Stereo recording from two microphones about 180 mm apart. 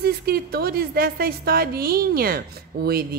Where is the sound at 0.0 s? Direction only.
60° right (ahead or behind).